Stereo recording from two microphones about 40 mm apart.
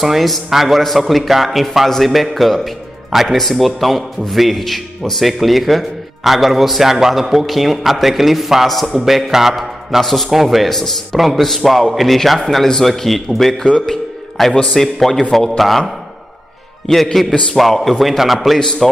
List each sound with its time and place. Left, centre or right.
0.0 s a man's voice: centre
13.6 s a man's voice: centre
14.4 s speech: centre
16.8 s speech: centre